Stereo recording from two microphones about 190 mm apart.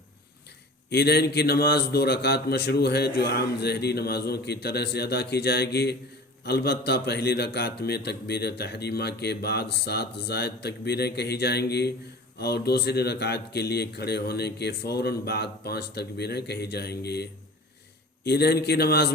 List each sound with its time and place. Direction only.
0.9 s a man's voice: 55° left (ahead or behind)
18.3 s a man's voice: 55° left (ahead or behind)